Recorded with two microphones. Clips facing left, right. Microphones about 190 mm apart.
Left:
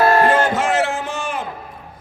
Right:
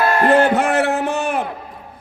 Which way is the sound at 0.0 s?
35° left (ahead or behind).